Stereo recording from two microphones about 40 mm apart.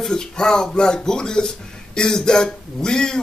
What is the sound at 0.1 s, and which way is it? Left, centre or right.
Speech, centre.